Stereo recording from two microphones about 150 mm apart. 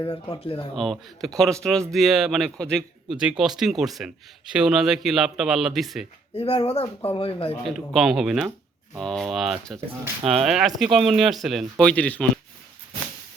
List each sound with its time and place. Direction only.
0.0 s speech: 35° left (ahead or behind)
0.8 s a man's voice: centre (ahead or behind)
6.3 s speech: 40° left (ahead or behind)
7.7 s a man's voice: centre (ahead or behind)